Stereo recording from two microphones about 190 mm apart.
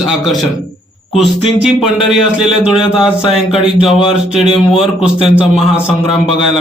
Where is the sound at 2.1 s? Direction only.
5° right (ahead or behind).